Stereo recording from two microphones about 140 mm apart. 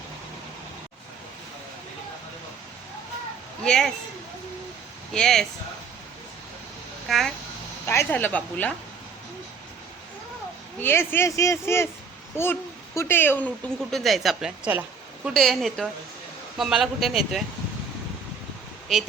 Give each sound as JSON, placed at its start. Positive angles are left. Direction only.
{"t": 3.6, "sound": "speech", "side_deg": 5}
{"t": 5.1, "sound": "speech", "side_deg": 5}
{"t": 7.1, "sound": "speech", "side_deg": 0}
{"t": 7.9, "sound": "a woman's voice", "side_deg": 15}
{"t": 10.8, "sound": "speech", "side_deg": 15}
{"t": 13.9, "sound": "a woman's voice", "side_deg": 0}
{"t": 15.3, "sound": "speech", "side_deg": 0}